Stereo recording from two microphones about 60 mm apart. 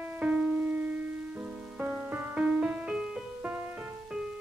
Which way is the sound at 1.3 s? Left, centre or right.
Right.